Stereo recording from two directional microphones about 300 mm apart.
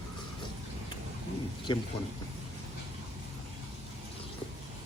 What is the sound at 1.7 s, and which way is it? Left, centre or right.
Speech, centre.